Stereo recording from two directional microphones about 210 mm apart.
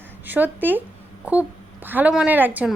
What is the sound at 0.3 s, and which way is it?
A woman's voice, 10° right (ahead or behind).